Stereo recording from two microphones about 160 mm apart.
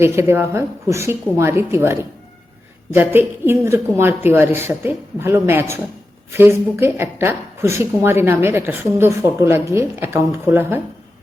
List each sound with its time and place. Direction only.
0.0 s a woman's voice: 15° right (ahead or behind)